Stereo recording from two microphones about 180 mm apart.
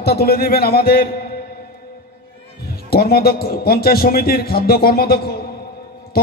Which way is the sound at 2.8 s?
60° left (ahead or behind).